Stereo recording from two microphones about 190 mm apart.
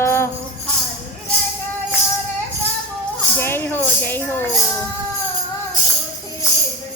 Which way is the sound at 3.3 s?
10° left (ahead or behind).